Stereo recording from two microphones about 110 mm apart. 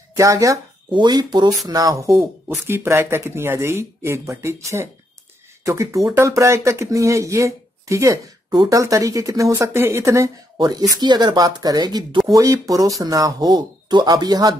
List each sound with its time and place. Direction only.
0.1 s speech: 30° right (ahead or behind)
0.9 s speech: 40° right (ahead or behind)